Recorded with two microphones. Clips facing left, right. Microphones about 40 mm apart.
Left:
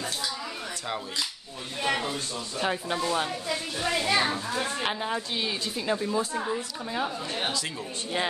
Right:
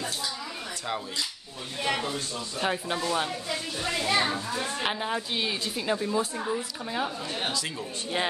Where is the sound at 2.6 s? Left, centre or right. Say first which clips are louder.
Even; centre.